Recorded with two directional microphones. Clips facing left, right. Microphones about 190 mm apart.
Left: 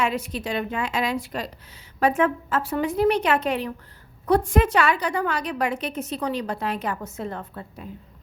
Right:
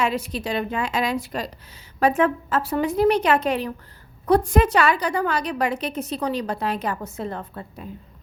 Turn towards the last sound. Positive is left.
turn(degrees=-35)  # may be behind; listen again after turning